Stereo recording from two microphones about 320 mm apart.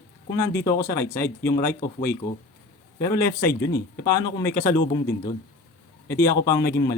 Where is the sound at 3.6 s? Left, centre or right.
Left.